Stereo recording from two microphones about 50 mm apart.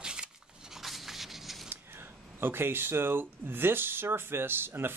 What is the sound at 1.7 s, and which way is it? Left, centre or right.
Speech, right.